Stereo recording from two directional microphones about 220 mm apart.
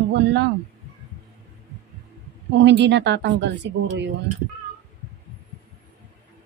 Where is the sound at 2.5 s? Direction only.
55° right (ahead or behind).